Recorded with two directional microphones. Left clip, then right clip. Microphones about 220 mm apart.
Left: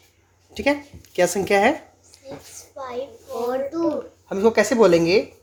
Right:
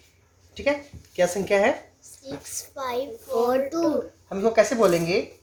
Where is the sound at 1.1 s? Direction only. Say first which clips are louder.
Left 3 dB; 45° left (ahead or behind).